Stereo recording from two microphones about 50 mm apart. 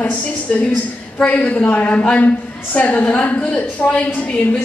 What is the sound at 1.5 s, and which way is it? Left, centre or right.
A woman's voice, left.